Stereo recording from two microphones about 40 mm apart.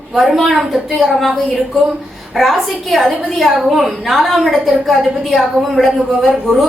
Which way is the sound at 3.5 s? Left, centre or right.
Centre.